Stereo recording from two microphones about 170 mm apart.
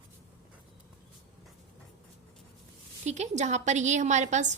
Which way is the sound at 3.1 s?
40° right (ahead or behind).